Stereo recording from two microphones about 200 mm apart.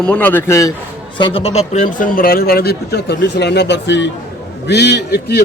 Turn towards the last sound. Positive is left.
turn(degrees=55)  # may be behind; listen again after turning